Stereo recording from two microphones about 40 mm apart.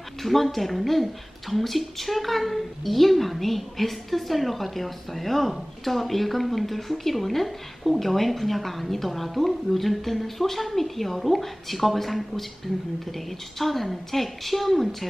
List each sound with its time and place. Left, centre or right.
0.2 s speech: centre